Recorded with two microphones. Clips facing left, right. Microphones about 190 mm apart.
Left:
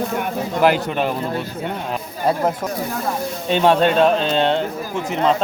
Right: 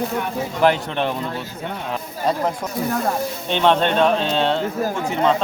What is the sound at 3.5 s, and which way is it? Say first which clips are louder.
Speech: left 3 dB; 5° left (ahead or behind).